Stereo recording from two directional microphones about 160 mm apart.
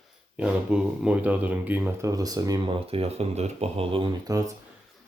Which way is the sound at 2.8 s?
40° right (ahead or behind).